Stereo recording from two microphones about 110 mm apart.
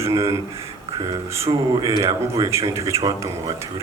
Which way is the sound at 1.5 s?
40° right (ahead or behind).